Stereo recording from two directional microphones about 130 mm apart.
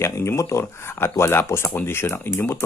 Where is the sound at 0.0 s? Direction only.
20° left (ahead or behind).